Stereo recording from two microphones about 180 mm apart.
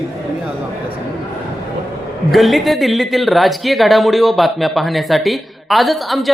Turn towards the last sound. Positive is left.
turn(degrees=0)  # may be behind; listen again after turning